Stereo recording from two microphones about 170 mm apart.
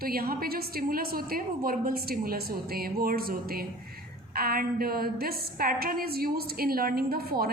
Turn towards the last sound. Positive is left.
turn(degrees=-60)  # may be behind; listen again after turning